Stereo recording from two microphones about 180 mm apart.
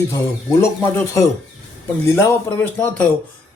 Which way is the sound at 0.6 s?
15° left (ahead or behind).